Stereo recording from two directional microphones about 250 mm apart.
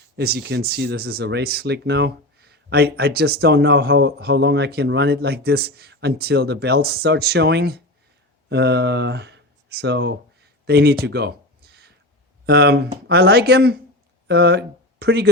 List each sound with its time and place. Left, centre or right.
0.2 s speech: right
12.5 s speech: right